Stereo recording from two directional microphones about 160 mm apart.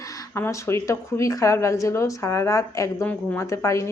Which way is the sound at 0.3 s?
15° left (ahead or behind).